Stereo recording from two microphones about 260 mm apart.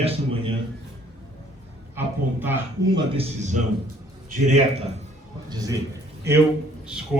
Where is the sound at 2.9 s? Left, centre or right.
Right.